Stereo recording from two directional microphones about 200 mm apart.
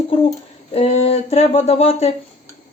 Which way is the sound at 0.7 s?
30° left (ahead or behind).